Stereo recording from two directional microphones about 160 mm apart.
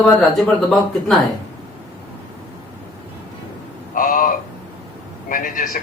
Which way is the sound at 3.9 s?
60° left (ahead or behind).